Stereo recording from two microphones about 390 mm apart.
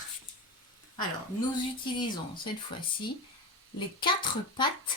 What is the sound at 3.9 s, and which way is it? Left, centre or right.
Speech, centre.